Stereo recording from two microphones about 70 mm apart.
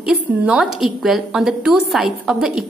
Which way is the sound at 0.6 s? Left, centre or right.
Centre.